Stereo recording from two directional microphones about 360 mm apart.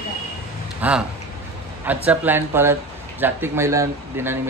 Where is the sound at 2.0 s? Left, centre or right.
Centre.